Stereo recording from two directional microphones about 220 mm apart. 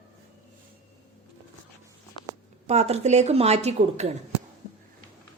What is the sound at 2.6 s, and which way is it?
A woman's voice, 30° right (ahead or behind).